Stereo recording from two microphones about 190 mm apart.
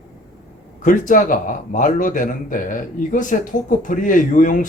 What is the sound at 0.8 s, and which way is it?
A man's voice, 45° left (ahead or behind).